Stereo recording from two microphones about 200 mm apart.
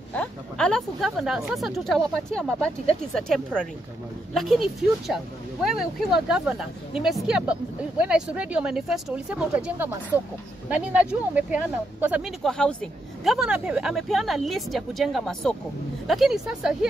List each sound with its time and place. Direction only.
0.1 s speech: 5° left (ahead or behind)